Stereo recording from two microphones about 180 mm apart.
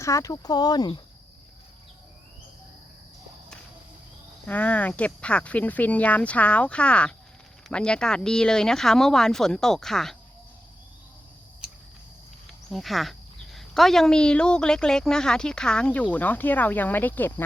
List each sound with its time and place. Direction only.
0.0 s speech: 15° left (ahead or behind)
4.4 s speech: 10° left (ahead or behind)
12.7 s speech: centre (ahead or behind)